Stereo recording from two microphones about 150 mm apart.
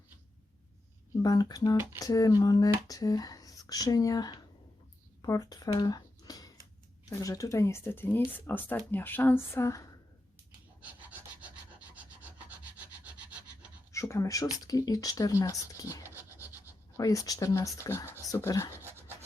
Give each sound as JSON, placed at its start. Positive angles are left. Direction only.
{"t": 1.1, "sound": "speech", "side_deg": 25}
{"t": 5.2, "sound": "a sound", "side_deg": 25}
{"t": 7.1, "sound": "speech", "side_deg": 20}
{"t": 10.8, "sound": "pant", "side_deg": -10}
{"t": 12.5, "sound": "rub", "side_deg": -10}
{"t": 13.9, "sound": "speech", "side_deg": 20}
{"t": 16.0, "sound": "rub", "side_deg": -15}
{"t": 17.0, "sound": "speech", "side_deg": 20}